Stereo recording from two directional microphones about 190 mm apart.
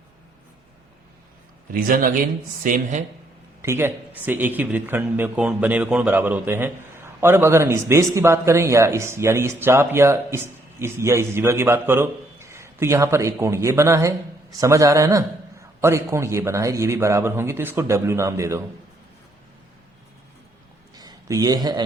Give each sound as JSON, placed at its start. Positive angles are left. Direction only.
{"t": 1.7, "sound": "speech", "side_deg": -45}
{"t": 3.6, "sound": "speech", "side_deg": -15}
{"t": 20.9, "sound": "a sound", "side_deg": -20}